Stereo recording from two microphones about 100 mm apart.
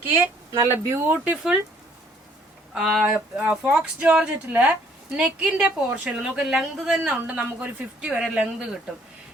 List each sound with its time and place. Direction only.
0.2 s speech: 25° right (ahead or behind)
2.7 s speech: centre (ahead or behind)
3.2 s speech: 20° right (ahead or behind); by 7.0 s 5° right (ahead or behind)
7.0 s speech: 15° right (ahead or behind)